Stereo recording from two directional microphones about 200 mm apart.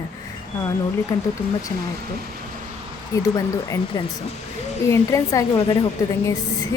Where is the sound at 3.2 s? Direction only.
15° left (ahead or behind).